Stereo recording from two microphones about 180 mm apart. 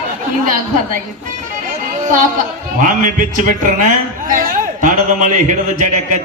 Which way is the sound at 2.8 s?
45° right (ahead or behind).